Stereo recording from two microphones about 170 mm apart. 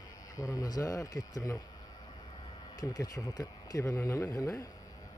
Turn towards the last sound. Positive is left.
turn(degrees=15)  # may be behind; listen again after turning